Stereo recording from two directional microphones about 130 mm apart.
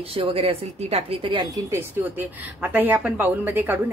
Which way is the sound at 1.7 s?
20° right (ahead or behind).